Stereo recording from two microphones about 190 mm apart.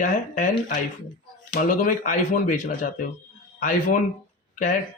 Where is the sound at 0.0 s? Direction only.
45° left (ahead or behind).